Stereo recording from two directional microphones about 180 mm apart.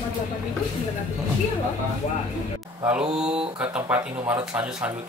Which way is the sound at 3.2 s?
5° right (ahead or behind).